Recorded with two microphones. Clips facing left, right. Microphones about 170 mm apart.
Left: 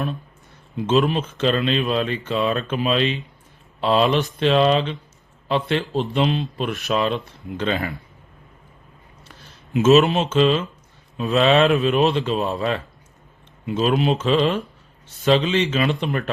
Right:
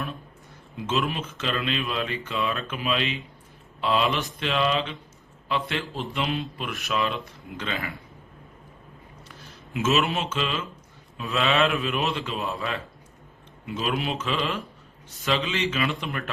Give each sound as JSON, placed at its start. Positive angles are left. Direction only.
{"t": 1.0, "sound": "speech", "side_deg": 30}
{"t": 9.7, "sound": "speech", "side_deg": 35}